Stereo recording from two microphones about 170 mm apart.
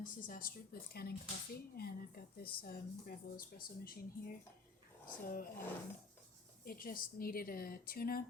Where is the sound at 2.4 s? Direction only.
60° left (ahead or behind).